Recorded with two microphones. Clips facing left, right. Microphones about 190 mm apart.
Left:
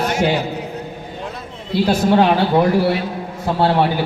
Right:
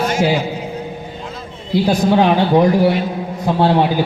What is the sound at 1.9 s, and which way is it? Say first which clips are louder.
A man's voice: even; 15° right (ahead or behind).